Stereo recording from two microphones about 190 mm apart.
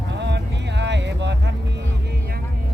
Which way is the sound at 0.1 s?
65° right (ahead or behind).